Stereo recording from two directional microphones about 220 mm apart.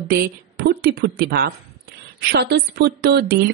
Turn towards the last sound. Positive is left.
turn(degrees=-45)  # may be behind; listen again after turning